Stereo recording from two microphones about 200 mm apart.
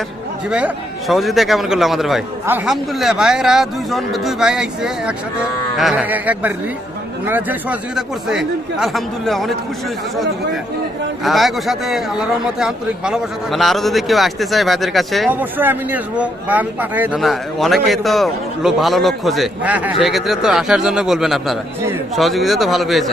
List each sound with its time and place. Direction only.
0.5 s a man's voice: 5° right (ahead or behind)
11.2 s a man's voice: centre (ahead or behind)